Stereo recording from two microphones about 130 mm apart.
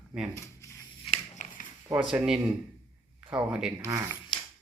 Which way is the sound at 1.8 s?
10° right (ahead or behind).